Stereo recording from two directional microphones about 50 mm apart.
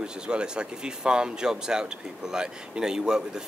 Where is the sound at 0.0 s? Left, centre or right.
Centre.